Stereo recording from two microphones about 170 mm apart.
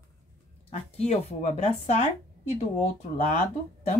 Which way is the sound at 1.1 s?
45° left (ahead or behind).